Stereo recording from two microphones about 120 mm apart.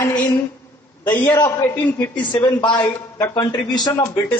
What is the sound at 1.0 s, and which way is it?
Speech, 15° left (ahead or behind).